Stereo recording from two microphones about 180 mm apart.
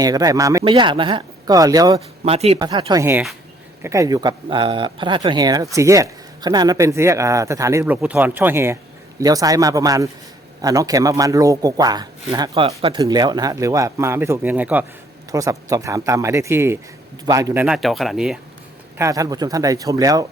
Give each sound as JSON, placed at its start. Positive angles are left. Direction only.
{"t": 0.0, "sound": "a man's voice", "side_deg": -20}
{"t": 0.6, "sound": "a man's voice", "side_deg": -30}
{"t": 2.2, "sound": "a man's voice", "side_deg": -35}
{"t": 3.0, "sound": "a man's voice", "side_deg": -10}
{"t": 17.7, "sound": "speech", "side_deg": 0}
{"t": 18.9, "sound": "a man's voice", "side_deg": -20}